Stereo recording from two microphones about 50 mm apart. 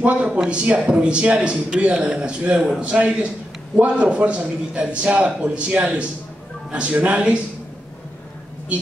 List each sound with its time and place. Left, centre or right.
0.0 s a man's voice: right